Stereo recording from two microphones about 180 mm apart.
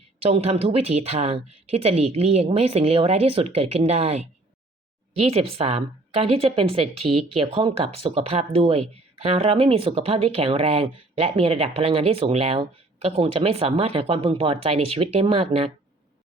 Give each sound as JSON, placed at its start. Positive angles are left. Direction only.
{"t": 0.2, "sound": "speech", "side_deg": -35}